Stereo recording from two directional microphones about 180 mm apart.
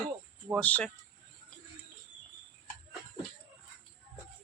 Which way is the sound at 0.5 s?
5° left (ahead or behind).